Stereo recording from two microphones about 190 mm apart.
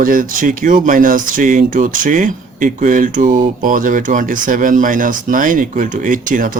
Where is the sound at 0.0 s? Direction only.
45° right (ahead or behind).